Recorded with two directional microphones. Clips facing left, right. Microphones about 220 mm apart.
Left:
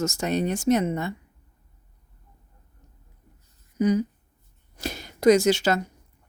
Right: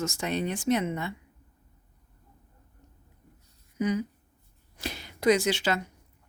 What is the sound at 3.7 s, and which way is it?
Speech, 40° left (ahead or behind).